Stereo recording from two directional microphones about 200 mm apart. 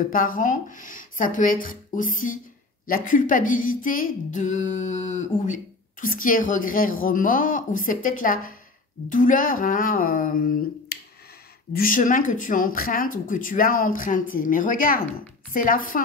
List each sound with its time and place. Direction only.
0.1 s speech: 45° left (ahead or behind)